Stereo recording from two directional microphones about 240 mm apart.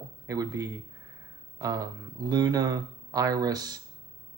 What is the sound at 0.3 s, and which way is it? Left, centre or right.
Speech, centre.